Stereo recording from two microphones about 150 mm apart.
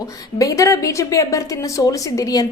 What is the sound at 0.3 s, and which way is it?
A woman's voice, 20° left (ahead or behind).